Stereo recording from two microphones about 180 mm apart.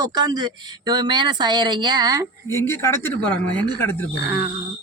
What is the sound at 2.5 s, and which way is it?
Speech, 15° left (ahead or behind).